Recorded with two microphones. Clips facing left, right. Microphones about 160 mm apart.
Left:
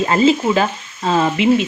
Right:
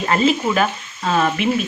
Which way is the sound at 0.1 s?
25° left (ahead or behind).